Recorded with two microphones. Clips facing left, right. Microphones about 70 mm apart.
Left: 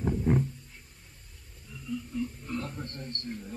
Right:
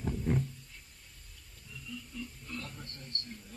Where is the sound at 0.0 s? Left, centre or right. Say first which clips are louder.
Left 6 dB; left.